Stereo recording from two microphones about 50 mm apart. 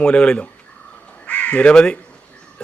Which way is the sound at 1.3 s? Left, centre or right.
Left.